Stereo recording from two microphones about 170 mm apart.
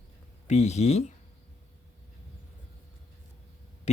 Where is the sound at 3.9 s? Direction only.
40° left (ahead or behind).